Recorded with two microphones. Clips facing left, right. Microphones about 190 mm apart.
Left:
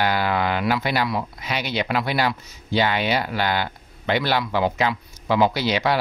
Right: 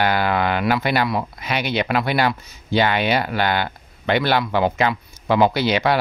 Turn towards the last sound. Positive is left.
turn(degrees=-60)  # may be behind; listen again after turning